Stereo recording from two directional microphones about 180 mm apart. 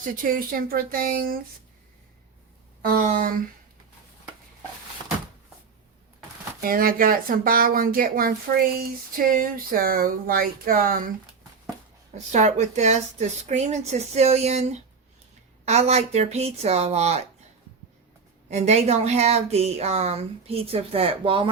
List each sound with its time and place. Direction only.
0.0 s speech: 50° right (ahead or behind)
2.9 s speech: 50° right (ahead or behind)
6.6 s speech: 55° right (ahead or behind)
12.1 s speech: 40° right (ahead or behind)
18.5 s speech: 40° right (ahead or behind)